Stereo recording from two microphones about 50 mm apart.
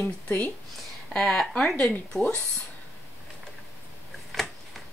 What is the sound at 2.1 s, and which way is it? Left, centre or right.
Speech, left.